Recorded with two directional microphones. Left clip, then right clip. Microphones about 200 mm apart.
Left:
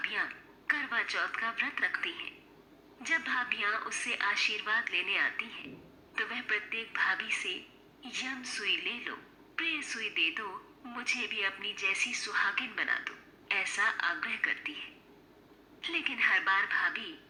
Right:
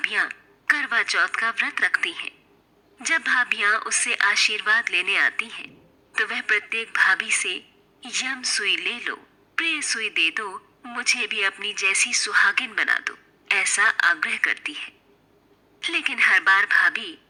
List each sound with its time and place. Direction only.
0.0 s a woman's voice: 40° right (ahead or behind)